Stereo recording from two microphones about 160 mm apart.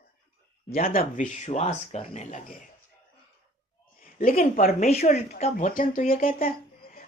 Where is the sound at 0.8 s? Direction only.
65° left (ahead or behind); by 2.4 s 40° left (ahead or behind).